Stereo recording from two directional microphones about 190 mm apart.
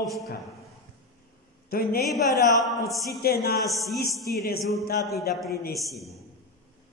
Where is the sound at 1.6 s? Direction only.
50° left (ahead or behind).